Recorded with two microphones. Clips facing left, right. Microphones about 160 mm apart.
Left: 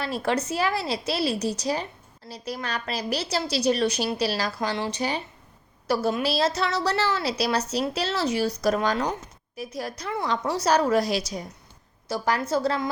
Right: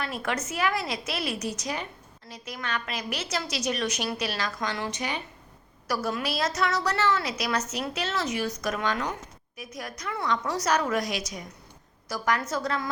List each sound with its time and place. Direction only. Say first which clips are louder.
0.0 s a woman's voice: left 5 dB; 30° left (ahead or behind)